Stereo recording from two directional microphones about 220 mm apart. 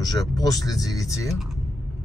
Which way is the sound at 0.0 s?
15° left (ahead or behind).